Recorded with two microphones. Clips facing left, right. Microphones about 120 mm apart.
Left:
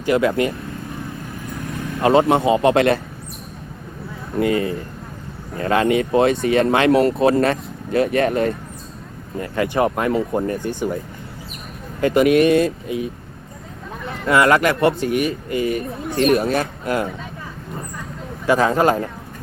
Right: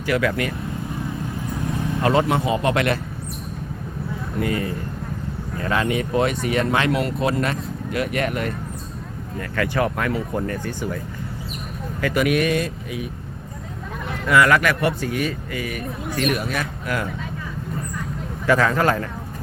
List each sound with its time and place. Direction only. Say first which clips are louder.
0.0 s speech: left 4 dB; 25° left (ahead or behind)
2.0 s speech: left 5 dB; 25° left (ahead or behind)
4.4 s speech: left 6 dB; 25° left (ahead or behind)
5.5 s speech: left 5 dB; 40° left (ahead or behind)
6.1 s speech: left 4 dB; 30° left (ahead or behind)
14.3 s speech: left 2 dB; 25° left (ahead or behind)
18.4 s speech: left 2 dB; 20° left (ahead or behind)